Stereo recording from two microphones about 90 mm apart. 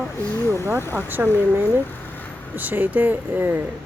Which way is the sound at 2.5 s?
20° right (ahead or behind).